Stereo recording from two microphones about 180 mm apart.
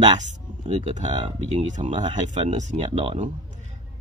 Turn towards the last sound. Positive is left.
turn(degrees=-40)  # may be behind; listen again after turning